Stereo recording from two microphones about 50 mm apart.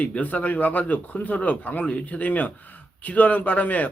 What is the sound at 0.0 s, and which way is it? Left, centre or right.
Speech, left.